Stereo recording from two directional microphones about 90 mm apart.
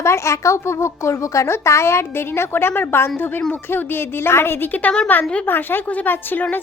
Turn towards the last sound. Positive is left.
turn(degrees=20)  # may be behind; listen again after turning